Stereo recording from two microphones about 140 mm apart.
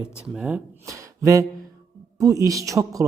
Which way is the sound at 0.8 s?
20° right (ahead or behind).